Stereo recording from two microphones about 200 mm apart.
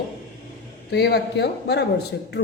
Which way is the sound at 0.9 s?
55° left (ahead or behind).